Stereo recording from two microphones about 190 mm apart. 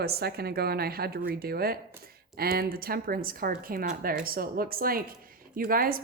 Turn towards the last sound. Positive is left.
turn(degrees=-50)  # may be behind; listen again after turning